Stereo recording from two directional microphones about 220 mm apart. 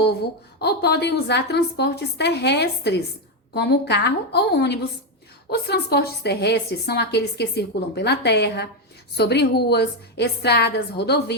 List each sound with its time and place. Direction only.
0.6 s a woman's voice: 50° left (ahead or behind)